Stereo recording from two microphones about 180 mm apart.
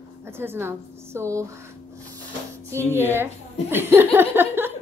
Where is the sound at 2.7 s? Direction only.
15° right (ahead or behind).